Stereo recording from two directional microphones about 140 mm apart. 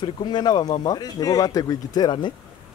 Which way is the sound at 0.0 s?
30° left (ahead or behind).